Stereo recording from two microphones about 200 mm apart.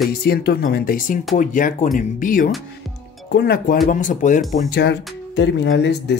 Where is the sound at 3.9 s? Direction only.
40° left (ahead or behind).